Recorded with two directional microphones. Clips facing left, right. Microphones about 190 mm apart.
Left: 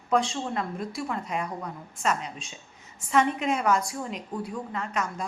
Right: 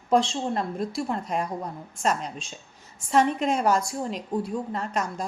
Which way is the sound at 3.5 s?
35° right (ahead or behind).